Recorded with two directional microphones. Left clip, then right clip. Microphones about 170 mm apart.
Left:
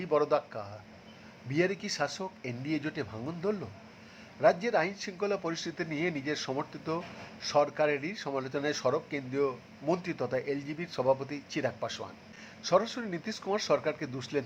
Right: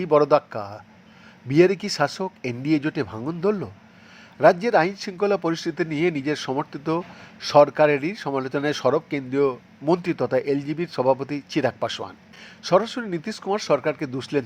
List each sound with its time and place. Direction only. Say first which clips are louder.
0.0 s speech: right 10 dB; 35° right (ahead or behind)